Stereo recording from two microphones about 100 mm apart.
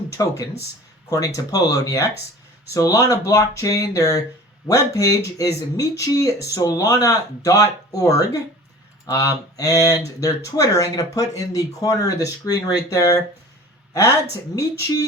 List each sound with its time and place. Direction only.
0.1 s speech: 35° left (ahead or behind)
1.5 s speech: 35° left (ahead or behind)
14.5 s speech: 35° left (ahead or behind)